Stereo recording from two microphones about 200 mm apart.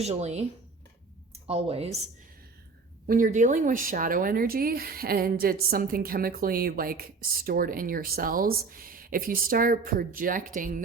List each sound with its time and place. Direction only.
0.0 s speech: 35° right (ahead or behind)
3.1 s speech: 40° right (ahead or behind)